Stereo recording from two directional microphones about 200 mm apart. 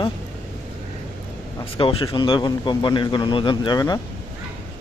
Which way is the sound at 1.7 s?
25° left (ahead or behind).